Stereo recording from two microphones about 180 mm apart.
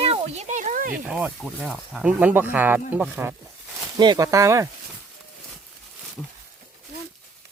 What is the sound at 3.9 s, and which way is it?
Speech, 20° right (ahead or behind).